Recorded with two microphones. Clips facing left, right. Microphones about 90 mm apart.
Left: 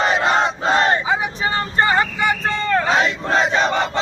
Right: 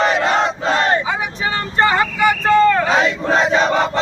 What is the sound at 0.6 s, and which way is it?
Battle cry, 25° left (ahead or behind).